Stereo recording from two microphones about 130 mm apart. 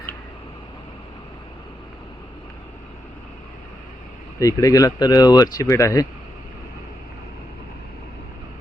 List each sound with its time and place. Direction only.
4.4 s speech: 25° left (ahead or behind)